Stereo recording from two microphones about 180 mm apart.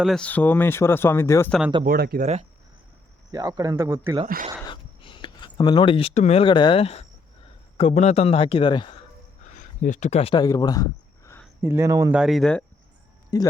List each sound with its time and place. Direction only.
0.0 s speech: 5° left (ahead or behind)
1.8 s speech: 55° right (ahead or behind)
3.3 s speech: 20° right (ahead or behind)
4.6 s a sound: 25° left (ahead or behind)
7.8 s a man's voice: 35° left (ahead or behind)
9.6 s speech: 45° left (ahead or behind); by 11.4 s 15° left (ahead or behind)
11.6 s speech: 15° right (ahead or behind)
12.1 s speech: centre (ahead or behind)
13.3 s speech: 20° left (ahead or behind)